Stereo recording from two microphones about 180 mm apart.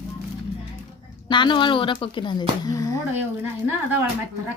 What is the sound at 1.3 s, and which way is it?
Speech, 25° left (ahead or behind).